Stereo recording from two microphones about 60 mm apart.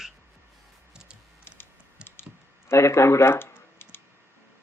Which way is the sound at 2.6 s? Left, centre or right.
Left.